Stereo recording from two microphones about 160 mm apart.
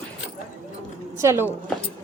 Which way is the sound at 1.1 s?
15° right (ahead or behind).